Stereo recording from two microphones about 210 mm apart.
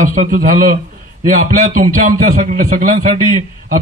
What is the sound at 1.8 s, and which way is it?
A man's voice, 40° right (ahead or behind).